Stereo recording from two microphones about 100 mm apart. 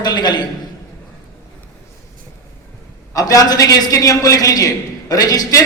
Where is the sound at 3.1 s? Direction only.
35° left (ahead or behind).